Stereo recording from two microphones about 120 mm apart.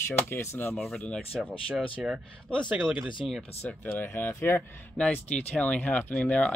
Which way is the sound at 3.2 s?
Centre (ahead or behind).